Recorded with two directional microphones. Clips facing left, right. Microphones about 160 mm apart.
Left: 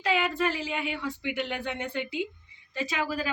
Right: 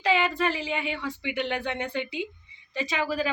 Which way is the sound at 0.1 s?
5° left (ahead or behind).